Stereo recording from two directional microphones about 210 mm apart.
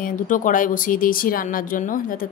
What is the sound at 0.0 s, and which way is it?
Speech, 40° left (ahead or behind).